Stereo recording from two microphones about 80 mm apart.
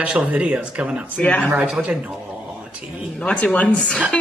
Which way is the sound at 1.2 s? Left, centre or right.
Centre.